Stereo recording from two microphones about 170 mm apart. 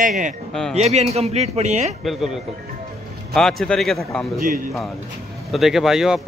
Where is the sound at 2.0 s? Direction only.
Centre (ahead or behind).